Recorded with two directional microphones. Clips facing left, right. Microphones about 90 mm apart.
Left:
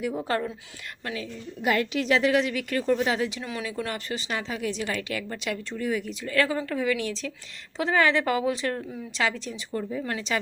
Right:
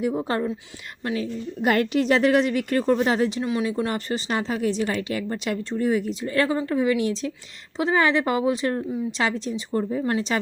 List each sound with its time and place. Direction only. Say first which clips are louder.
0.0 s speech: right 3 dB; 25° right (ahead or behind)
1.0 s a woman's voice: right 7 dB; 30° right (ahead or behind)
1.6 s a woman's voice: right 4 dB; 50° right (ahead or behind)
3.4 s speech: right 7 dB; 25° right (ahead or behind)